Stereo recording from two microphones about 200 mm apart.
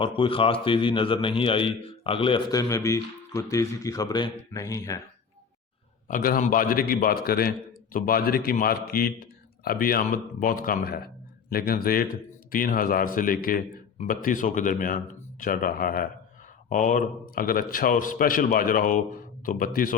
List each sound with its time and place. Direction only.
0.0 s a man's voice: 25° left (ahead or behind)
6.1 s speech: 45° left (ahead or behind)